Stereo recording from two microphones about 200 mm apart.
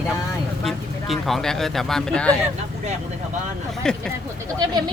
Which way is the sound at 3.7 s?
5° left (ahead or behind).